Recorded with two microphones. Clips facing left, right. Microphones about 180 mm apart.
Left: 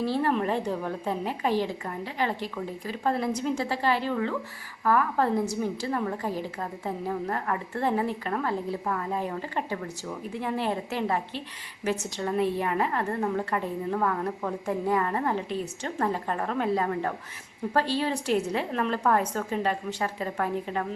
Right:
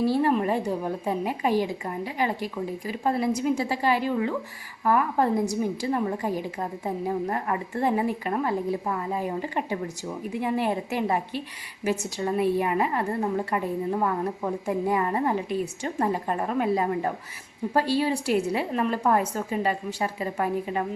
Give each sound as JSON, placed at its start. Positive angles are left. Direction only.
{"t": 0.0, "sound": "a woman's voice", "side_deg": -10}